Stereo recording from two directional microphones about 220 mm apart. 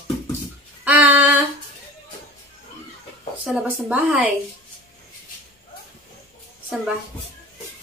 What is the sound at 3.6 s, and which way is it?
Speech, 5° right (ahead or behind).